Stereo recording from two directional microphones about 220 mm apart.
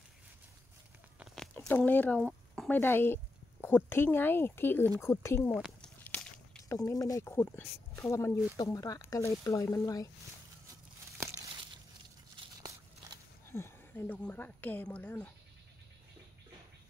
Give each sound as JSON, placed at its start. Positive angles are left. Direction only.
{"t": 1.2, "sound": "a sound", "side_deg": 0}
{"t": 3.6, "sound": "speech", "side_deg": 10}
{"t": 5.5, "sound": "walk", "side_deg": 0}
{"t": 6.8, "sound": "speech", "side_deg": 15}
{"t": 12.4, "sound": "a sound", "side_deg": -20}
{"t": 13.5, "sound": "speech", "side_deg": 10}